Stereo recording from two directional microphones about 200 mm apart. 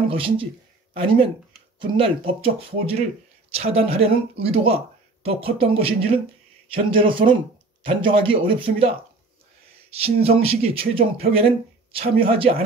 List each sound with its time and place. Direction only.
0.1 s speech: 25° right (ahead or behind)
10.2 s speech: 30° right (ahead or behind)